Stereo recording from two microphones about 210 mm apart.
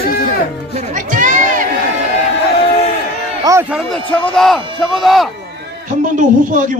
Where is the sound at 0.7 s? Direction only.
35° right (ahead or behind).